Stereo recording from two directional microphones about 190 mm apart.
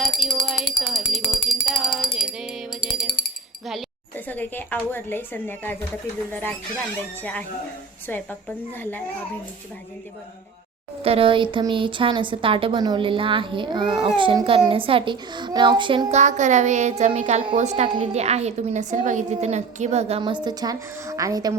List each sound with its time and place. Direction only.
0.0 s tambourine: centre (ahead or behind)
0.8 s music: centre (ahead or behind)
3.1 s a sound: 50° left (ahead or behind)
4.3 s a woman's voice: 10° left (ahead or behind)
7.2 s a woman's voice: 10° left (ahead or behind)
11.0 s a woman's voice: 30° right (ahead or behind)
16.1 s a woman's voice: 40° right (ahead or behind); by 21.5 s 20° right (ahead or behind)